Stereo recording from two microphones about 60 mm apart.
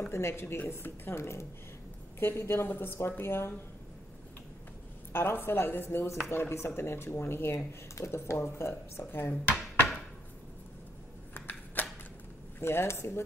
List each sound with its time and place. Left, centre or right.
0.1 s a woman's voice: left
5.1 s a woman's voice: left
9.3 s dishes: left
11.3 s shuffling cards: left
12.5 s speech: left